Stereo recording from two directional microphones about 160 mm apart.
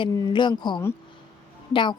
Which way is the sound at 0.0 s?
30° left (ahead or behind).